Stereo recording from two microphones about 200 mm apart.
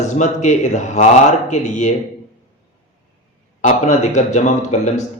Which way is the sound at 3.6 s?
35° left (ahead or behind).